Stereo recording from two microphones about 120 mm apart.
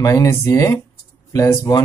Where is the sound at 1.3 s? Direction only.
30° left (ahead or behind).